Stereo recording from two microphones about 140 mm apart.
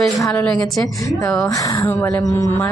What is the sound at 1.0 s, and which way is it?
A woman's voice, 20° left (ahead or behind).